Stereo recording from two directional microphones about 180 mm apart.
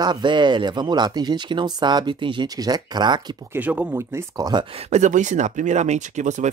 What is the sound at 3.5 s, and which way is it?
Speech, 10° right (ahead or behind).